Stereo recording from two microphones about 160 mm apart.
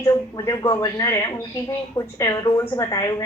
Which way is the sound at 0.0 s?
20° left (ahead or behind).